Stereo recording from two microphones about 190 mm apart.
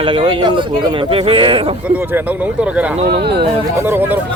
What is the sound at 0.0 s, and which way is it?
Speech, 25° right (ahead or behind).